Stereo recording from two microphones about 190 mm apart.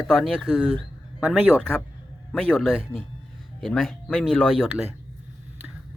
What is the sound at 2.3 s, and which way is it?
Speech, 5° left (ahead or behind).